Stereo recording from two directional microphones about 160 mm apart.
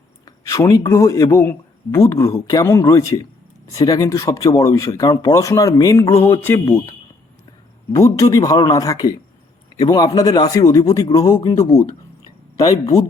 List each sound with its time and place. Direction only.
0.3 s a man's voice: 20° left (ahead or behind)
7.9 s a man's voice: 20° left (ahead or behind)